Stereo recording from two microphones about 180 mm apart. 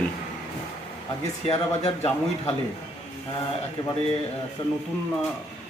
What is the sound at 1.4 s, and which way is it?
Speech, 35° left (ahead or behind).